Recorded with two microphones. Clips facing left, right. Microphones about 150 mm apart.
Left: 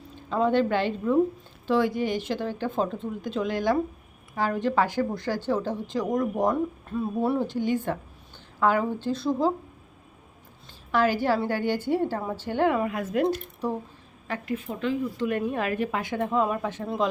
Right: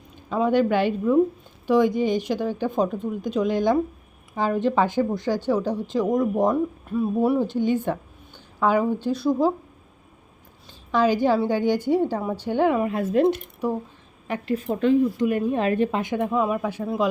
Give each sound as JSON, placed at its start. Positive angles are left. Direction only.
{"t": 0.2, "sound": "a woman's voice", "side_deg": -10}
{"t": 6.9, "sound": "speech", "side_deg": 0}
{"t": 7.3, "sound": "a woman's voice", "side_deg": -20}
{"t": 10.9, "sound": "a woman's voice", "side_deg": -15}
{"t": 12.9, "sound": "speech", "side_deg": -30}
{"t": 13.3, "sound": "speech", "side_deg": -10}
{"t": 14.4, "sound": "a woman's voice", "side_deg": -35}
{"t": 15.2, "sound": "a woman's voice", "side_deg": -10}
{"t": 15.5, "sound": "a woman's voice", "side_deg": -30}